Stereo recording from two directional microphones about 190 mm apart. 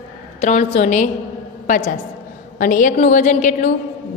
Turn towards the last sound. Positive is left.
turn(degrees=40)  # may be behind; listen again after turning